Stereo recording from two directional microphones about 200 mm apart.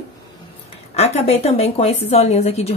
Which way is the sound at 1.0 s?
30° left (ahead or behind).